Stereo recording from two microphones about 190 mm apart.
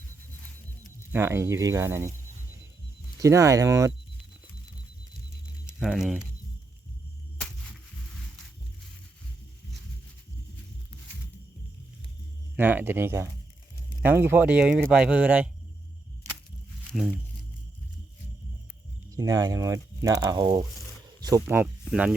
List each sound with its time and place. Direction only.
1.1 s speech: 15° right (ahead or behind)
3.2 s speech: 15° right (ahead or behind)
5.6 s speech: 5° right (ahead or behind)
12.5 s speech: 10° right (ahead or behind)
16.9 s speech: 5° right (ahead or behind)
19.1 s speech: 15° right (ahead or behind)